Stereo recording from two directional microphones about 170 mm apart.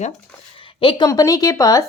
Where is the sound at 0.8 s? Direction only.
30° left (ahead or behind).